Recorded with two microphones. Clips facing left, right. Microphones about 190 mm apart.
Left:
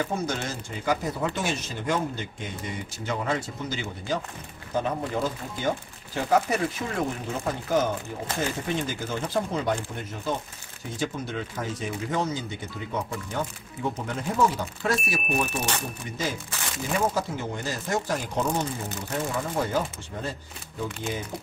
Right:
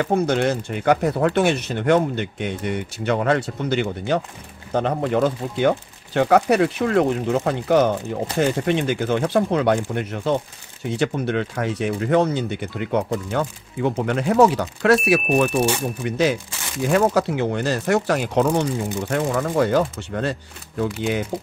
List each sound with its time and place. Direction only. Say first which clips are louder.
0.0 s speech: right 10 dB; 65° right (ahead or behind)
16.0 s speech: right 11 dB; 75° right (ahead or behind)